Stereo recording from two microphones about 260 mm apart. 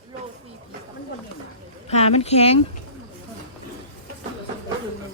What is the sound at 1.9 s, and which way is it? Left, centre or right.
Speech, left.